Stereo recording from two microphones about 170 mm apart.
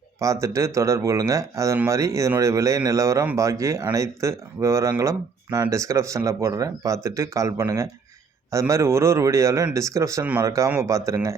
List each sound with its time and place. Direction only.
0.2 s speech: 20° right (ahead or behind)